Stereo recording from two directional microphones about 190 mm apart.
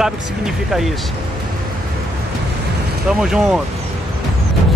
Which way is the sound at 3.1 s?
5° right (ahead or behind).